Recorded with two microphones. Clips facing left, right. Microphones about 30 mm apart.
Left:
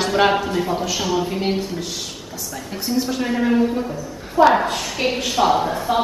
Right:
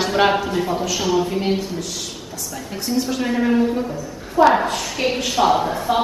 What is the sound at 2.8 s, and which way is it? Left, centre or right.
A woman's voice, centre.